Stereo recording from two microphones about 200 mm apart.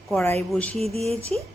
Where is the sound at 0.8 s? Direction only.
30° right (ahead or behind).